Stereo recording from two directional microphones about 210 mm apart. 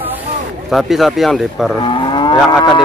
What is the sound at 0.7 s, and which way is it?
Speech, centre (ahead or behind).